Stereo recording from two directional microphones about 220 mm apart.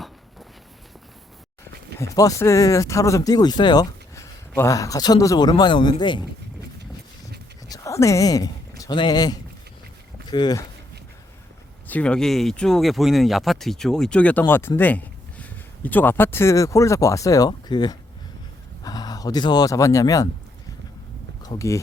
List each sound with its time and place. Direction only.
2.0 s speech: 15° left (ahead or behind)
7.7 s a sound: 15° left (ahead or behind)
8.8 s speech: 20° left (ahead or behind)
11.9 s speech: 5° left (ahead or behind)
21.4 s speech: 15° left (ahead or behind)